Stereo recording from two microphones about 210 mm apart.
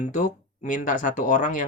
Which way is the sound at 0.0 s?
35° left (ahead or behind).